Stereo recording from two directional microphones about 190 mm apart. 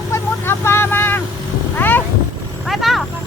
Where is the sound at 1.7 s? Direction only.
10° left (ahead or behind).